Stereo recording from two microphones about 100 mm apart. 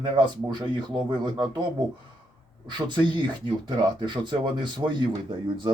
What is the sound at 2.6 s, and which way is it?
Speech, 50° right (ahead or behind).